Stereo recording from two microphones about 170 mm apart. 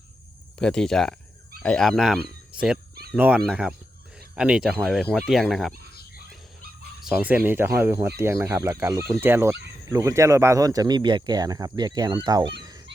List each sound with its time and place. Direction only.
0.6 s speech: 5° left (ahead or behind)
5.9 s frog: 65° left (ahead or behind)
7.0 s speech: 5° right (ahead or behind); by 12.5 s 25° right (ahead or behind)